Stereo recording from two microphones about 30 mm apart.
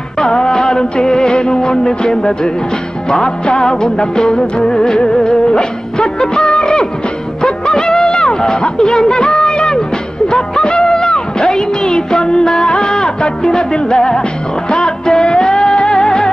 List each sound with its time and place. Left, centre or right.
0.2 s music: left
7.4 s a sound: left
14.7 s music: left